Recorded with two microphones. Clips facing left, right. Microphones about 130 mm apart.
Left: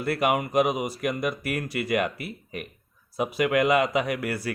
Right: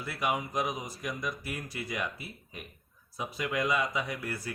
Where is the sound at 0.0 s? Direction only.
65° left (ahead or behind).